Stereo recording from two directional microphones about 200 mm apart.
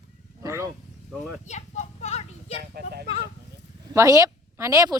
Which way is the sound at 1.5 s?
35° left (ahead or behind).